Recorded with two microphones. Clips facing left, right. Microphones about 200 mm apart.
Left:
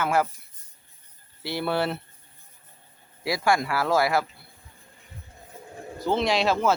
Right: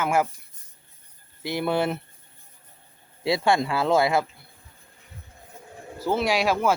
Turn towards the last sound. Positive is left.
turn(degrees=-10)  # may be behind; listen again after turning